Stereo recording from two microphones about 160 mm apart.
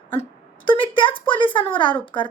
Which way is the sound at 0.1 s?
30° left (ahead or behind).